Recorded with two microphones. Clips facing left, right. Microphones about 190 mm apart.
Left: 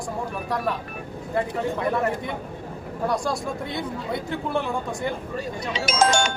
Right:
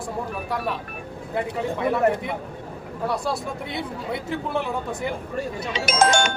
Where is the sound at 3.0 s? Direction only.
5° right (ahead or behind).